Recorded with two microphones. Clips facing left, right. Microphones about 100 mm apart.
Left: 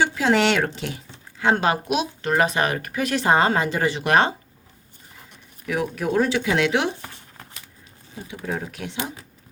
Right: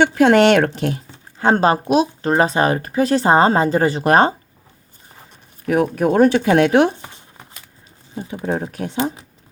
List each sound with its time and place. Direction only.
0.2 s speech: 55° right (ahead or behind); by 4.4 s 40° right (ahead or behind)
5.6 s speech: 45° right (ahead or behind)
7.0 s a sound: 20° right (ahead or behind)
8.4 s speech: 30° right (ahead or behind)